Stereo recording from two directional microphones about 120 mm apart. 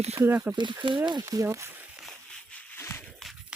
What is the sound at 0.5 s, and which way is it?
Speech, 40° right (ahead or behind).